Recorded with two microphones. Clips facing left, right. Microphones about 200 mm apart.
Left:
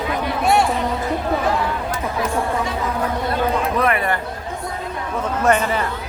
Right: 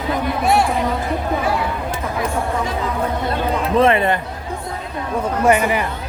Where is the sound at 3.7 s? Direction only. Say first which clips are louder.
Right 5 dB; 25° right (ahead or behind).